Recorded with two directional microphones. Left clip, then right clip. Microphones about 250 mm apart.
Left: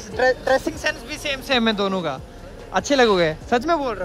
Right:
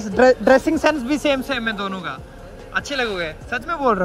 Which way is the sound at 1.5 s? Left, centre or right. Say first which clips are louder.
Left 4 dB; centre.